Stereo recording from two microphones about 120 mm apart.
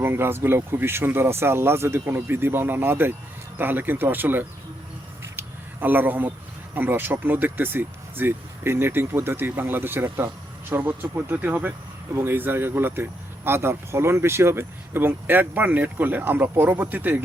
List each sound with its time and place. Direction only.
0.0 s speech: 20° right (ahead or behind)
5.2 s a sound: 15° right (ahead or behind)
6.7 s speech: 15° right (ahead or behind)